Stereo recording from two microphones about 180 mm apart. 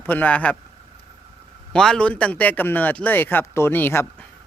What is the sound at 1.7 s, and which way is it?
Speech, 5° left (ahead or behind).